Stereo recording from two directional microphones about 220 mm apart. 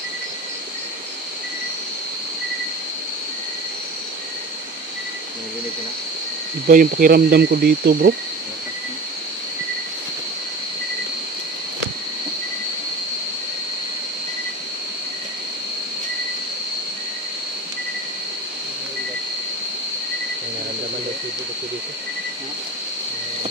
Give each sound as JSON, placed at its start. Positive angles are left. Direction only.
{"t": 6.7, "sound": "speech", "side_deg": -40}